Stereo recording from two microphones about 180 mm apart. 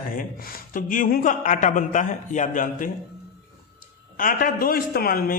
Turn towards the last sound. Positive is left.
turn(degrees=55)  # may be behind; listen again after turning